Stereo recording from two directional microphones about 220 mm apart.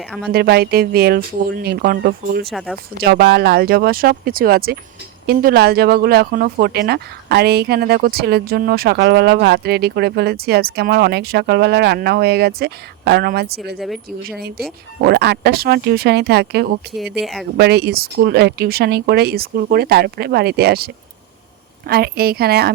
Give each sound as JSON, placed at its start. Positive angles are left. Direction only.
{"t": 0.3, "sound": "speech", "side_deg": -45}
{"t": 2.5, "sound": "speech", "side_deg": 0}
{"t": 3.0, "sound": "speech", "side_deg": -45}
{"t": 13.7, "sound": "speech", "side_deg": 0}
{"t": 14.3, "sound": "speech", "side_deg": -45}
{"t": 16.9, "sound": "speech", "side_deg": 0}
{"t": 17.6, "sound": "speech", "side_deg": -50}